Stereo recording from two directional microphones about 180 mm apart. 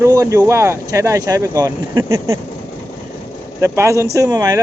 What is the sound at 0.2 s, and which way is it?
Speech, 20° right (ahead or behind).